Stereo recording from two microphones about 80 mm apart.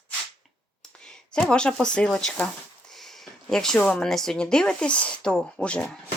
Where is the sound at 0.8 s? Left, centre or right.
Centre.